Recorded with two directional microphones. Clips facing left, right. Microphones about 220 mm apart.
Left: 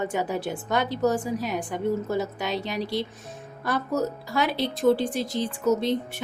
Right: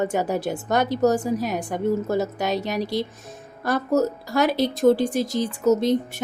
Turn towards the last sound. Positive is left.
turn(degrees=-45)  # may be behind; listen again after turning